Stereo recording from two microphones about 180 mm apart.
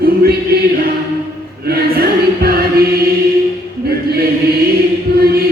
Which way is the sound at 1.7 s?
60° right (ahead or behind).